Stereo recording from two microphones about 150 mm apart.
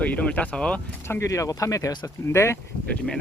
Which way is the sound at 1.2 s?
20° left (ahead or behind).